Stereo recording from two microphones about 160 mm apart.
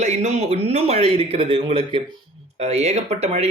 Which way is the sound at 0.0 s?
45° right (ahead or behind).